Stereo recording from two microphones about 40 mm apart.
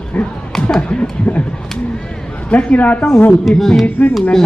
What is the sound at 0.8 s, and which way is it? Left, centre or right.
Speech, left.